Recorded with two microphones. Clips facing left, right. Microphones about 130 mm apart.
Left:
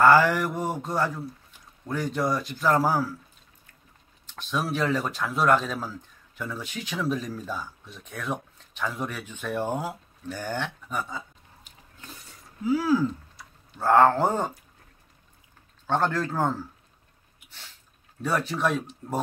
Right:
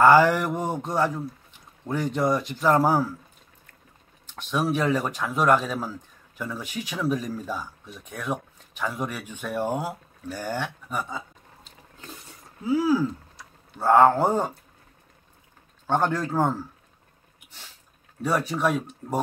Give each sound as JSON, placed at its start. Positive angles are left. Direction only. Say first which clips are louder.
{"t": 0.0, "sound": "speech", "louder": "right 2 dB", "side_deg": -15}
{"t": 4.3, "sound": "speech", "louder": "right 3 dB", "side_deg": -15}
{"t": 12.7, "sound": "speech", "louder": "right 2 dB", "side_deg": -15}
{"t": 15.9, "sound": "speech", "louder": "right 1 dB", "side_deg": -15}
{"t": 18.2, "sound": "speech", "louder": "right 2 dB", "side_deg": -10}